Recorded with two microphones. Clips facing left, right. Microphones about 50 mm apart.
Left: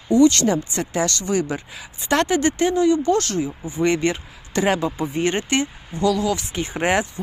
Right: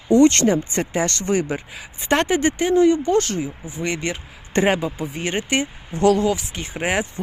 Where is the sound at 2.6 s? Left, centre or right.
Centre.